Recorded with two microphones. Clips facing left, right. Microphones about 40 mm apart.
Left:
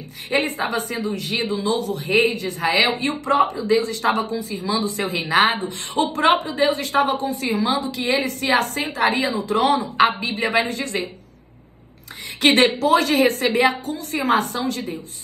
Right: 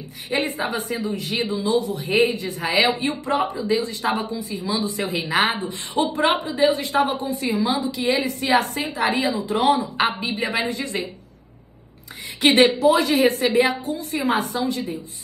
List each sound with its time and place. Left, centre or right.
0.3 s a woman's voice: left
12.4 s a woman's voice: left